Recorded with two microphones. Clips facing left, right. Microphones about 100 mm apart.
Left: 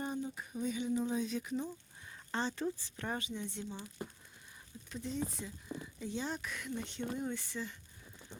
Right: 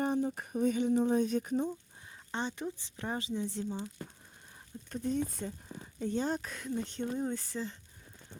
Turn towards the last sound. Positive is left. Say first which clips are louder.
# right 4 dB
turn(degrees=-35)  # may be behind; listen again after turning